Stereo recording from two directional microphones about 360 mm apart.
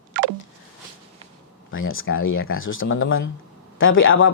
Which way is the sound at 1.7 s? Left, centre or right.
Left.